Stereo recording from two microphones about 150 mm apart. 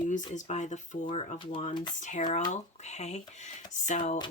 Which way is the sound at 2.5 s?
50° left (ahead or behind).